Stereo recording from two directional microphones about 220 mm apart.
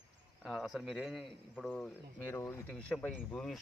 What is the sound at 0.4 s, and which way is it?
Speech, centre (ahead or behind).